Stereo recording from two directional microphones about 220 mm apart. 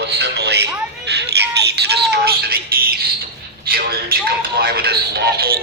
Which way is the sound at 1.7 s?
50° right (ahead or behind).